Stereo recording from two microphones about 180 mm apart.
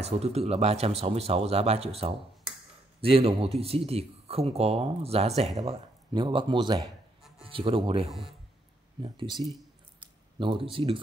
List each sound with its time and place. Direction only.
0.0 s speech: 35° right (ahead or behind)
8.1 s speech: centre (ahead or behind)
9.0 s speech: 30° right (ahead or behind)
10.4 s speech: 30° right (ahead or behind)